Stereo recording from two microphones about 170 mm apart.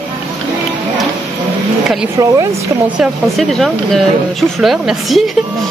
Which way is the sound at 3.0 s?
Centre (ahead or behind).